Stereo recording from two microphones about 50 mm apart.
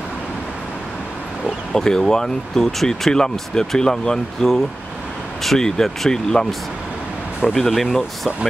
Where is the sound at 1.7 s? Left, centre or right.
Centre.